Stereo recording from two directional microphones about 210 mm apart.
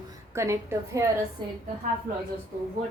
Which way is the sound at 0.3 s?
15° right (ahead or behind).